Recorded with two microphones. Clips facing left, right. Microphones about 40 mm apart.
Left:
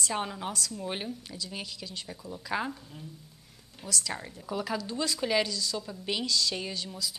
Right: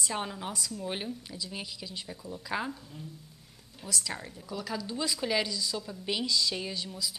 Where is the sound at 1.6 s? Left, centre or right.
Centre.